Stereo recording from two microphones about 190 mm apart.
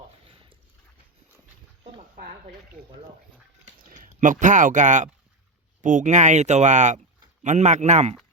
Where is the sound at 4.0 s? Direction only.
40° right (ahead or behind).